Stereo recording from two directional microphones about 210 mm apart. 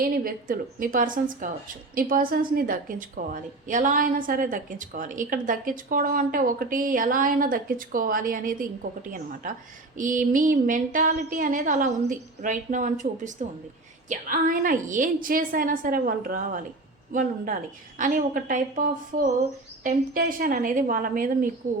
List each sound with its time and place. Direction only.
0.0 s a woman's voice: 45° right (ahead or behind)